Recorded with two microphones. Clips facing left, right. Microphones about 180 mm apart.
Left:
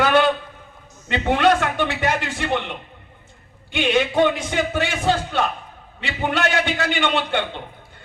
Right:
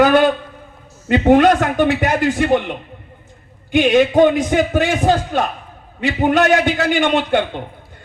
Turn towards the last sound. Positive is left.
turn(degrees=-45)  # may be behind; listen again after turning